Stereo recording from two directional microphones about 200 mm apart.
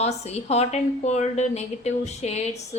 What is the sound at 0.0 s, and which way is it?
A woman's voice, 30° left (ahead or behind).